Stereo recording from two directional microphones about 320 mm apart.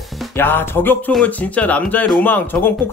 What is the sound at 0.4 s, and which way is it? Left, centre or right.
Speech, centre.